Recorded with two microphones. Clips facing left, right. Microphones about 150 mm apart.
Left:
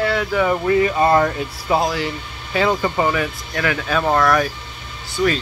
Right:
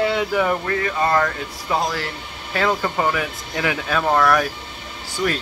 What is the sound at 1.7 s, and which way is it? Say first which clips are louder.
Speech: left 4 dB; 5° left (ahead or behind).